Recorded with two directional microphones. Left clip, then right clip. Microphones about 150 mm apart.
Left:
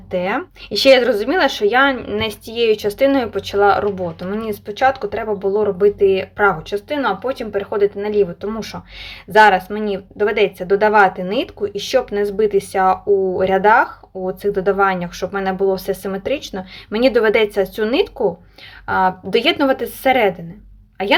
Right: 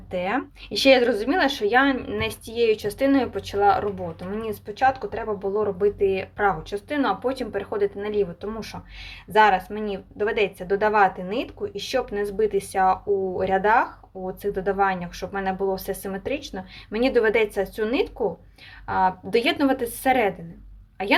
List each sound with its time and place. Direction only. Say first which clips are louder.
0.1 s speech: left 6 dB; 15° left (ahead or behind)